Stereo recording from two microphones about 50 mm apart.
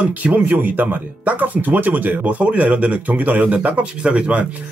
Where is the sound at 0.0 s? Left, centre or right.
Right.